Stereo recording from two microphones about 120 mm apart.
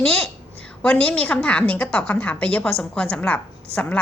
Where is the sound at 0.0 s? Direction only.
10° left (ahead or behind).